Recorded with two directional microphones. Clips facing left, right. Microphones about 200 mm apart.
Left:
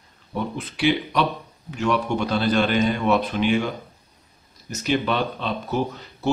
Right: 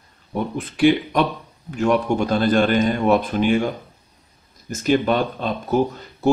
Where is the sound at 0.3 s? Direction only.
50° right (ahead or behind).